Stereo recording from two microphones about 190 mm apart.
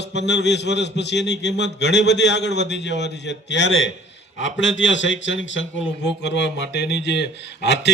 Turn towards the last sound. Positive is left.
turn(degrees=65)  # may be behind; listen again after turning